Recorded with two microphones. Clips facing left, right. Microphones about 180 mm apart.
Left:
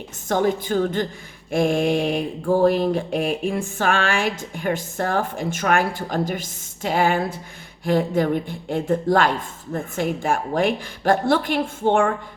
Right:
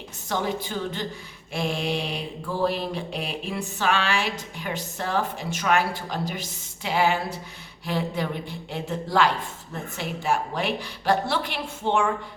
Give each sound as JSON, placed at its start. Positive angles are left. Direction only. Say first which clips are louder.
{"t": 0.3, "sound": "mantra", "louder": "left 7 dB", "side_deg": 50}